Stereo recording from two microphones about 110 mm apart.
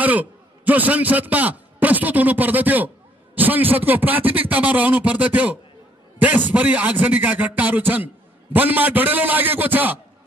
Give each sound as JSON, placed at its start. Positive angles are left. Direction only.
{"t": 0.0, "sound": "a man's voice", "side_deg": -15}